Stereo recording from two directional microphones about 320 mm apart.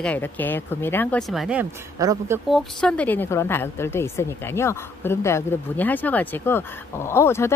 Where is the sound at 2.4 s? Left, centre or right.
Centre.